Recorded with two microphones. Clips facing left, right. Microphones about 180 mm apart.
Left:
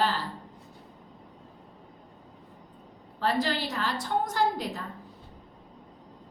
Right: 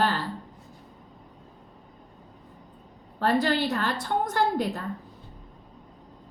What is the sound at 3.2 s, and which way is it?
A woman's voice, 55° right (ahead or behind).